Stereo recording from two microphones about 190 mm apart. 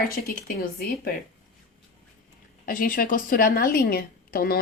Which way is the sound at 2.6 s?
50° left (ahead or behind).